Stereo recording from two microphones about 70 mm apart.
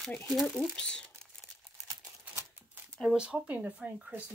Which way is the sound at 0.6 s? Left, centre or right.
Centre.